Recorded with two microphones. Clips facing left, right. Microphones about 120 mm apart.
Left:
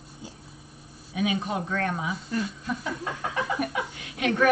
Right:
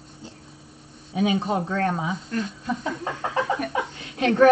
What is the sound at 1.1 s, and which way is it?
Speech, 30° right (ahead or behind).